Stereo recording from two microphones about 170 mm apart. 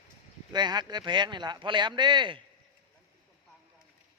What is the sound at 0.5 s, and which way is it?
Speech, 25° right (ahead or behind).